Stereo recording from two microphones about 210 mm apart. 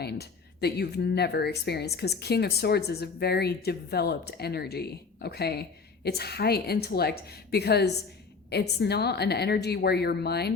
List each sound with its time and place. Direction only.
0.0 s speech: 50° left (ahead or behind)